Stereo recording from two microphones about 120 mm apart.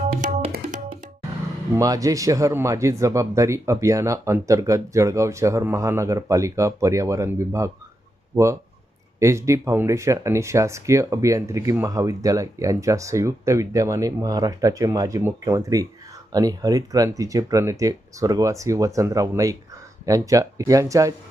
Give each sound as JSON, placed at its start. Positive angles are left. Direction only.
{"t": 0.2, "sound": "tabla", "side_deg": -90}
{"t": 1.7, "sound": "speech", "side_deg": -30}
{"t": 9.1, "sound": "speech", "side_deg": -25}